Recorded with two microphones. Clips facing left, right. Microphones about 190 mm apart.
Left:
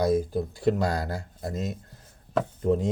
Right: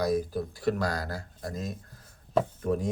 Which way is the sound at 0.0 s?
25° left (ahead or behind).